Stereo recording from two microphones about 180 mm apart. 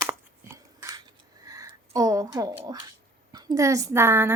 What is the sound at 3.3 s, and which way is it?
A woman's voice, 20° right (ahead or behind).